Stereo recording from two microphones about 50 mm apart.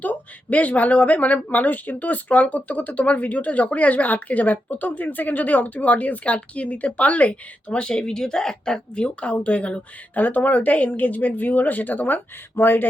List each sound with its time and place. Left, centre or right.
0.0 s speech: left